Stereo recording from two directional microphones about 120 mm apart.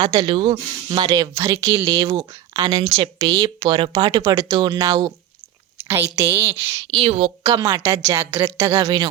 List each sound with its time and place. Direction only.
0.0 s speech: 35° right (ahead or behind)
0.3 s speech: 50° right (ahead or behind)
1.1 s speech: 25° right (ahead or behind)
3.6 s speech: 45° right (ahead or behind)
4.3 s speech: 30° right (ahead or behind)
4.5 s speech: 40° right (ahead or behind)
5.7 s a sound: 20° right (ahead or behind)
6.1 s speech: 20° right (ahead or behind)
6.9 s a woman's voice: 55° right (ahead or behind)
7.6 s speech: 25° right (ahead or behind)